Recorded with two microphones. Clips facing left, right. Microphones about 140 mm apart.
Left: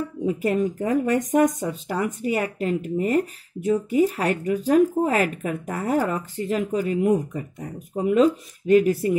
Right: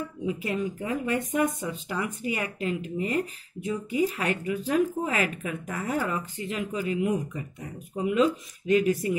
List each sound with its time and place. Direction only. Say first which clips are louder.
0.2 s speech: left 7 dB; 45° left (ahead or behind)